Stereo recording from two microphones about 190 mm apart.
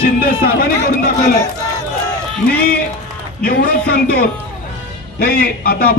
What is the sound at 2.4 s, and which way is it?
A man's voice, 55° left (ahead or behind).